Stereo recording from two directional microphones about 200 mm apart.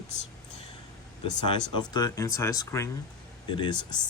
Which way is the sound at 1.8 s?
20° left (ahead or behind).